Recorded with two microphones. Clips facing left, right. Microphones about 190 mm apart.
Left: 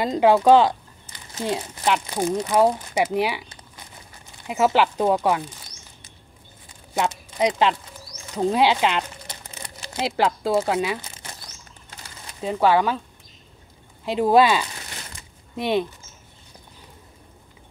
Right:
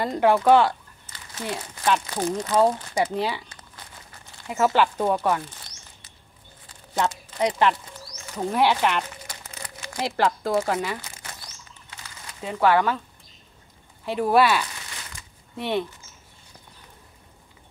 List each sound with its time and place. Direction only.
0.0 s speech: 15° left (ahead or behind)
6.7 s a sound: 10° left (ahead or behind)
8.4 s crumpling: 20° left (ahead or behind)
9.8 s speech: 20° left (ahead or behind)
12.4 s speech: 15° left (ahead or behind)
14.0 s speech: 15° left (ahead or behind)